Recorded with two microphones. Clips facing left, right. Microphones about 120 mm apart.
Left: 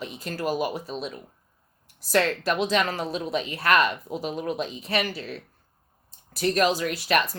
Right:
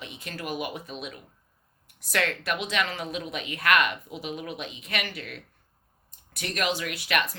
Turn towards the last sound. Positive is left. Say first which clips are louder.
# left 4 dB
turn(degrees=35)  # may be behind; listen again after turning